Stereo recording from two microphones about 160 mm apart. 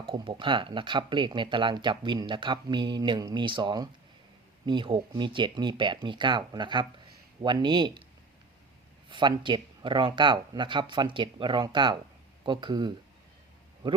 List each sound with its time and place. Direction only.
0.0 s speech: 30° right (ahead or behind)
9.0 s speech: 30° right (ahead or behind)